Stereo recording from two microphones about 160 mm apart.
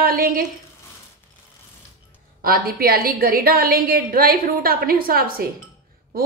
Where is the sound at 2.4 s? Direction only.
65° right (ahead or behind).